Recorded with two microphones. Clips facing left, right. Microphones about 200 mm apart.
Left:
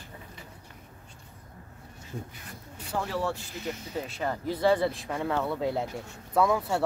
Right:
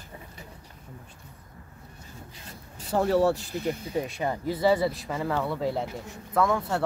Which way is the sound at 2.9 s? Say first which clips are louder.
Right 8 dB; 40° right (ahead or behind).